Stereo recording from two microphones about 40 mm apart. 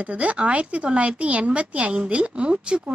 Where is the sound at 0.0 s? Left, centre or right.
Right.